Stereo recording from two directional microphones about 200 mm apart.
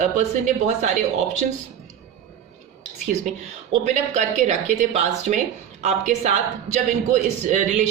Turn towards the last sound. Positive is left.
turn(degrees=-35)  # may be behind; listen again after turning